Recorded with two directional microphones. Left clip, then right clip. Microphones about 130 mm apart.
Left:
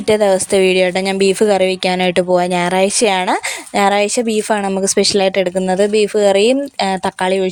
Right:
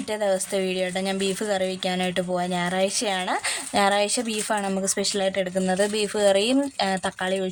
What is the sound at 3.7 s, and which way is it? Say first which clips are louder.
Speech: left 8 dB; 45° left (ahead or behind).